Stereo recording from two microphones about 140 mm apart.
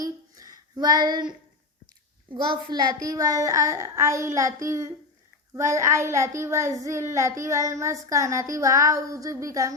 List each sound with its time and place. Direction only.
0.0 s a sound: 25° right (ahead or behind)
2.3 s a child's voice: 35° right (ahead or behind)
3.1 s child singing: 25° right (ahead or behind)